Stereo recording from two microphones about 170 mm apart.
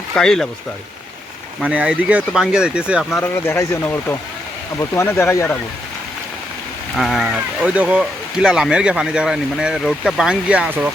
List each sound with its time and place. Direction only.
0.1 s speech: 5° left (ahead or behind)
1.6 s speech: 10° right (ahead or behind)
3.3 s speech: 15° left (ahead or behind)
6.9 s speech: centre (ahead or behind)